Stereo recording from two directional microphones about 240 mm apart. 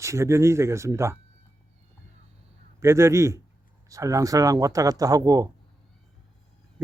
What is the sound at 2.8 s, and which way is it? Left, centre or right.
Speech, centre.